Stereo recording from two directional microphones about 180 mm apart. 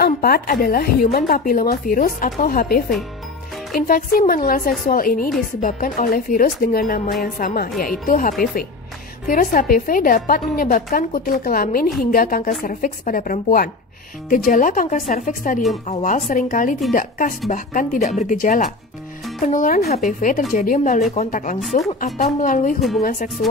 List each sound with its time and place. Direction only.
0.0 s a woman's voice: 55° left (ahead or behind)